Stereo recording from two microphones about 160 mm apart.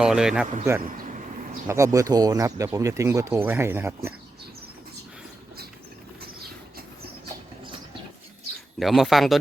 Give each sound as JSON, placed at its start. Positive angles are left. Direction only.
{"t": 0.0, "sound": "speech", "side_deg": -5}
{"t": 0.8, "sound": "speech", "side_deg": -60}
{"t": 1.6, "sound": "speech", "side_deg": -20}
{"t": 8.8, "sound": "speech", "side_deg": 0}